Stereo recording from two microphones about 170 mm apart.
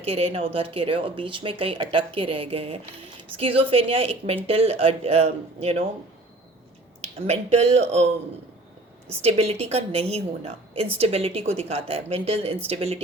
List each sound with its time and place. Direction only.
0.0 s speech: 35° right (ahead or behind)
7.0 s speech: 40° right (ahead or behind)
9.2 s speech: 35° right (ahead or behind)